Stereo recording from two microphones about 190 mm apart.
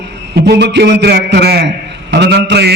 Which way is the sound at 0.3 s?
60° right (ahead or behind).